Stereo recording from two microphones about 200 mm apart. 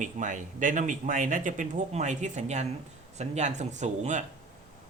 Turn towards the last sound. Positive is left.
turn(degrees=-35)  # may be behind; listen again after turning